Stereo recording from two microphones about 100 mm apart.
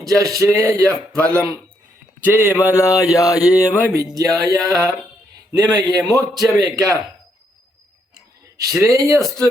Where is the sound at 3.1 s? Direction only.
35° left (ahead or behind).